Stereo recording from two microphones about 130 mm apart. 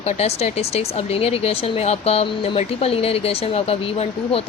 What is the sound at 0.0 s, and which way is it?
Speech, 55° left (ahead or behind).